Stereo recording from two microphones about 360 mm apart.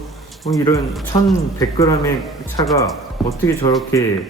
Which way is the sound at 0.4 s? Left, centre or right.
Centre.